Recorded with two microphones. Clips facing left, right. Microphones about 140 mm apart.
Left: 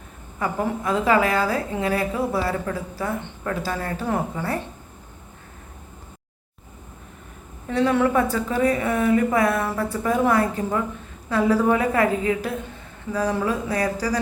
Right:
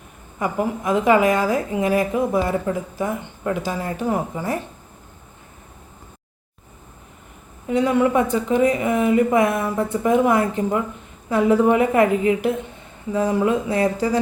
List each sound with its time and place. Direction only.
0.3 s a woman's voice: 15° right (ahead or behind)
7.7 s a woman's voice: 15° right (ahead or behind)